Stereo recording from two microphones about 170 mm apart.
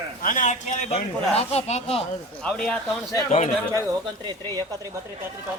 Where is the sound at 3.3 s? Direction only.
45° left (ahead or behind).